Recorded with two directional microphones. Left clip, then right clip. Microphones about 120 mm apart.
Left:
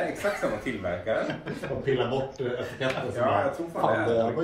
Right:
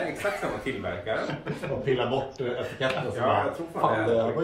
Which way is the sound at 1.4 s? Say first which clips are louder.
Right 1 dB; 15° right (ahead or behind).